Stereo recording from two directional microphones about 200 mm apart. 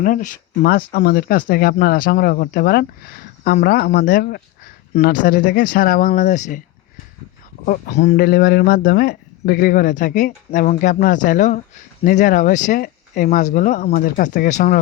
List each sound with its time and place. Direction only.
0.0 s speech: 40° left (ahead or behind)
7.6 s speech: 40° left (ahead or behind)
8.1 s speech: 50° left (ahead or behind)